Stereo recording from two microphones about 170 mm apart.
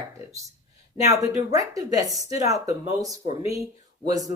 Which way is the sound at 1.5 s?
20° right (ahead or behind).